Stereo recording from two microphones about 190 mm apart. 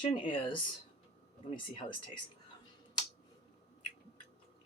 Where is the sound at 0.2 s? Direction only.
25° left (ahead or behind).